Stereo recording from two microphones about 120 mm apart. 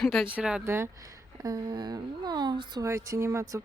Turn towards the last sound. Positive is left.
turn(degrees=-25)  # may be behind; listen again after turning